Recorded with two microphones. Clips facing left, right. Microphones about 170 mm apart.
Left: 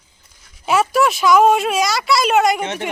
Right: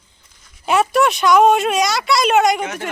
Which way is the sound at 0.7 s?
Centre (ahead or behind).